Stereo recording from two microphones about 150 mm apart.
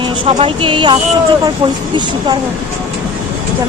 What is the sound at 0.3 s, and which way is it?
A woman's voice, 40° right (ahead or behind).